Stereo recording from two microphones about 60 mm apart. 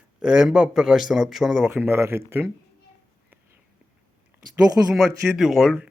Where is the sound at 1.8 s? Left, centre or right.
Right.